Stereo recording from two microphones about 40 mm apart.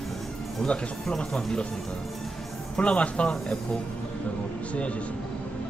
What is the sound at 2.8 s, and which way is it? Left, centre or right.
Speech, left.